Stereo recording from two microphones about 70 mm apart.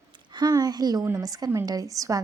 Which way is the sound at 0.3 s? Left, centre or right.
Right.